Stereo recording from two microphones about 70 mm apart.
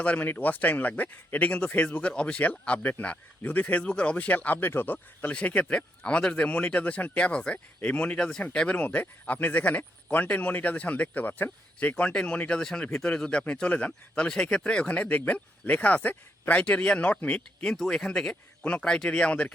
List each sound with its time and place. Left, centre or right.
0.0 s speech: left